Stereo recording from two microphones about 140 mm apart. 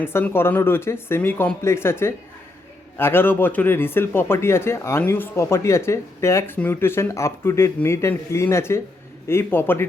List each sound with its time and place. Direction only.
0.0 s speech: 15° left (ahead or behind)